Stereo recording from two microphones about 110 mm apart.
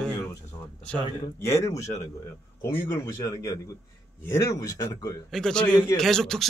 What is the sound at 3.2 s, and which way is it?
Speech, 30° left (ahead or behind).